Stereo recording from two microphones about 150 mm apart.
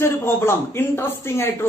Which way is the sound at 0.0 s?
15° left (ahead or behind).